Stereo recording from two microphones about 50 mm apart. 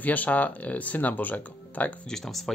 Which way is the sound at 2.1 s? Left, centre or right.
Centre.